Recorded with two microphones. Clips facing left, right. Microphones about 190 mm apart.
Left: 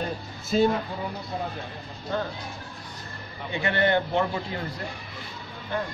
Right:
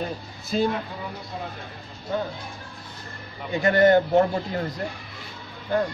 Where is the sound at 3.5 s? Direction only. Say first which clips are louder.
Right 6 dB; 40° right (ahead or behind).